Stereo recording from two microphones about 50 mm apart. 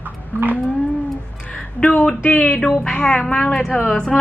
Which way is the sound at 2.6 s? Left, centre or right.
Centre.